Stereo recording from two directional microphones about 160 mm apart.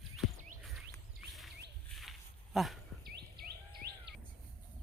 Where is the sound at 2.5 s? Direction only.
Centre (ahead or behind).